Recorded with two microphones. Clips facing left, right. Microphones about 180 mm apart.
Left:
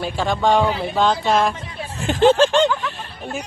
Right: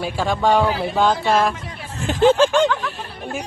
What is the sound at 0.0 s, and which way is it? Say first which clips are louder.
Speech: even; 5° right (ahead or behind).